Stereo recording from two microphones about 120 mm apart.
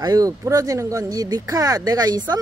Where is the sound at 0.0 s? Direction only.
30° right (ahead or behind).